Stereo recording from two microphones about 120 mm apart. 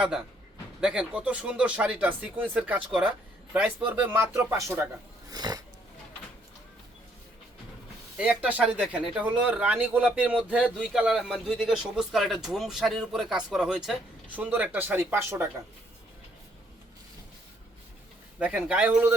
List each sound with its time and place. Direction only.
0.8 s speech: 10° right (ahead or behind); by 4.9 s 25° right (ahead or behind)
5.3 s a sound: 35° right (ahead or behind)
8.2 s speech: 10° right (ahead or behind)
14.3 s speech: 15° right (ahead or behind)
18.3 s speech: 10° right (ahead or behind)